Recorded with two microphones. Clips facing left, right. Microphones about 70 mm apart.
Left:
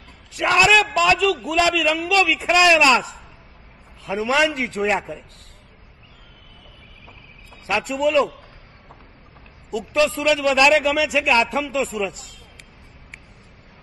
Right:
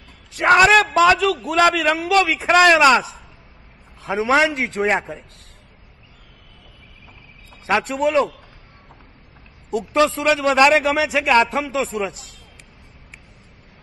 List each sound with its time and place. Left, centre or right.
0.4 s a man's voice: right
4.2 s a man's voice: right
7.6 s a man's voice: right
8.0 s a man's voice: right
9.7 s a man's voice: right
12.1 s speech: centre